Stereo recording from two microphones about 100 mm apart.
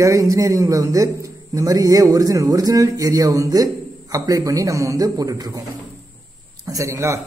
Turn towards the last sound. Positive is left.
turn(degrees=-30)  # may be behind; listen again after turning